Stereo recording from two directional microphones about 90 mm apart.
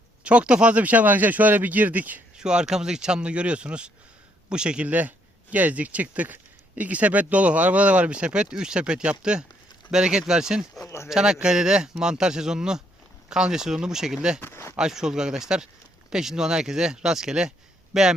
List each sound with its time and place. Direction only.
0.3 s speech: 10° right (ahead or behind)
2.4 s speech: 10° right (ahead or behind)
10.8 s speech: 30° left (ahead or behind)
11.1 s speech: 10° right (ahead or behind)
14.4 s speech: 30° left (ahead or behind)
14.8 s speech: 5° right (ahead or behind)